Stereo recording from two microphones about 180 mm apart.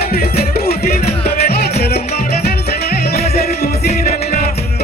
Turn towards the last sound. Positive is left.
turn(degrees=60)  # may be behind; listen again after turning